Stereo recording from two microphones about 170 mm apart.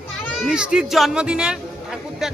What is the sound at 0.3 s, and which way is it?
A man's voice, 5° right (ahead or behind).